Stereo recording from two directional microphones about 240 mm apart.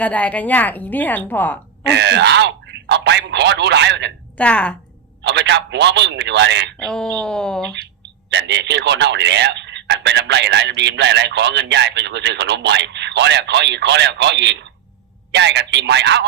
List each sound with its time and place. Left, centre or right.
0.0 s a woman's voice: centre
2.0 s speech: right
4.4 s speech: centre
5.2 s speech: right
6.7 s speech: centre
8.3 s speech: right